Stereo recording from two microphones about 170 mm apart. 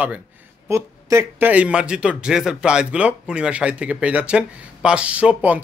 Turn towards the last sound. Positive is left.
turn(degrees=-10)  # may be behind; listen again after turning